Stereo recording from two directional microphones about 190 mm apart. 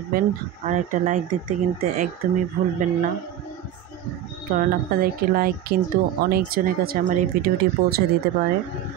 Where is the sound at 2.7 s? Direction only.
40° right (ahead or behind).